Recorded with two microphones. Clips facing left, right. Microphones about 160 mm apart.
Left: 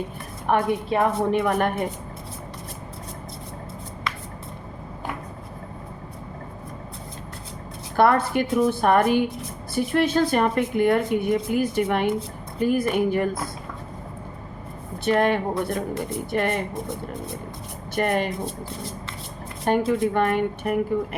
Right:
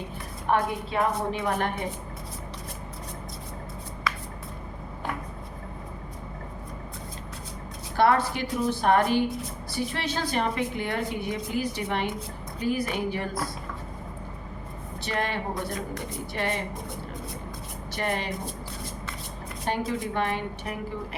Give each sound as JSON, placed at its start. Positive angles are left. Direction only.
{"t": 0.5, "sound": "a woman's voice", "side_deg": 55}
{"t": 7.9, "sound": "a woman's voice", "side_deg": 55}
{"t": 15.0, "sound": "a woman's voice", "side_deg": 55}
{"t": 17.9, "sound": "a woman's voice", "side_deg": 50}
{"t": 19.6, "sound": "a woman's voice", "side_deg": 50}